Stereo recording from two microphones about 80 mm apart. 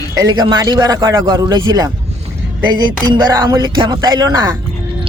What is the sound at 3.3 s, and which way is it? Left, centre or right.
Speech, right.